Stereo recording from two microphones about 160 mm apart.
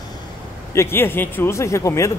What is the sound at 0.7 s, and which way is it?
Speech, 15° left (ahead or behind).